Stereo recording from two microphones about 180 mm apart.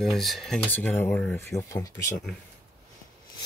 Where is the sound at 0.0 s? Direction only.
Centre (ahead or behind); by 2.1 s 15° left (ahead or behind).